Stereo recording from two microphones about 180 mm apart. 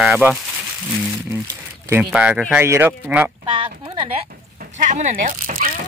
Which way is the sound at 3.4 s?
25° right (ahead or behind).